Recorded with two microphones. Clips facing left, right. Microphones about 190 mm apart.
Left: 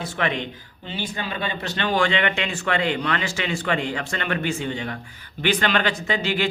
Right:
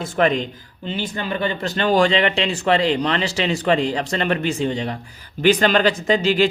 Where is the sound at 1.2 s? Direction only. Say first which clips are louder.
Right 7 dB; 45° right (ahead or behind).